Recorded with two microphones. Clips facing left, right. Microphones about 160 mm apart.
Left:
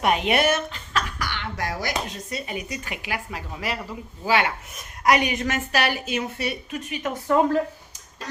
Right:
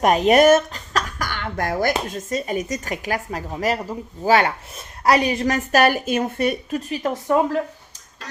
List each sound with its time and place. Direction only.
0.0 s speech: 40° right (ahead or behind)
6.7 s speech: 35° right (ahead or behind)